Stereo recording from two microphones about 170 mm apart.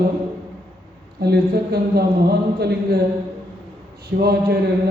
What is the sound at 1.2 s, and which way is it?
A man's voice, 70° right (ahead or behind).